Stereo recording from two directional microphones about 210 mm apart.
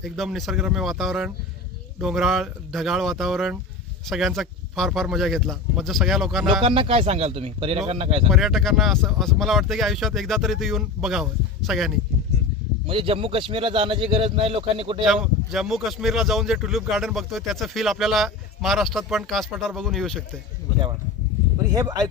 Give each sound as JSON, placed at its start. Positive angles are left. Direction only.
{"t": 0.0, "sound": "speech", "side_deg": 0}
{"t": 6.6, "sound": "speech", "side_deg": -25}
{"t": 8.3, "sound": "speech", "side_deg": 0}
{"t": 12.9, "sound": "speech", "side_deg": -25}
{"t": 15.0, "sound": "speech", "side_deg": 0}
{"t": 21.7, "sound": "speech", "side_deg": -15}